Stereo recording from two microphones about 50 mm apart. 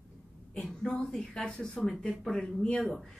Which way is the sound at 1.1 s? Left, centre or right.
Centre.